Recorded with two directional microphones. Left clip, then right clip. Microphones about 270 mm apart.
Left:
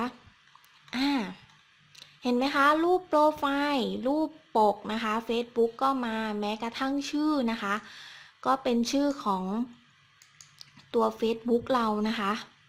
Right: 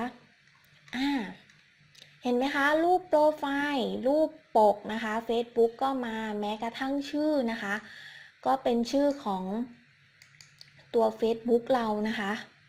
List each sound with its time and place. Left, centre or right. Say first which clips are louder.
0.9 s a sound: left 2 dB; centre
2.0 s speech: even; centre
4.1 s a woman's voice: right 4 dB; centre
4.9 s speech: left 1 dB; centre
10.9 s speech: right 1 dB; centre